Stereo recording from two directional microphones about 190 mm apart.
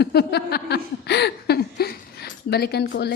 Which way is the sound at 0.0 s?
60° left (ahead or behind).